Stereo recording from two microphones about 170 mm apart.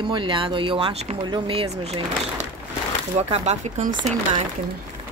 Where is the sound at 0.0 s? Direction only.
30° right (ahead or behind).